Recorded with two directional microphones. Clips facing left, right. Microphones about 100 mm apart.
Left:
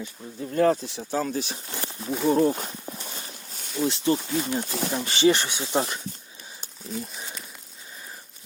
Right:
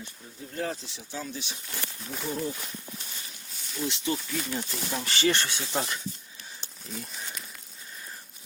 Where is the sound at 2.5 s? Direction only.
45° left (ahead or behind).